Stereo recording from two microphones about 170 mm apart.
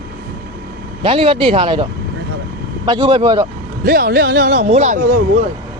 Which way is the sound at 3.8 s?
60° right (ahead or behind).